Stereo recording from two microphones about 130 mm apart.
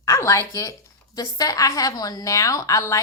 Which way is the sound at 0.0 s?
20° left (ahead or behind).